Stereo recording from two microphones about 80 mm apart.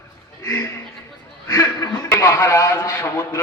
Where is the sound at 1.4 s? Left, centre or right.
Left.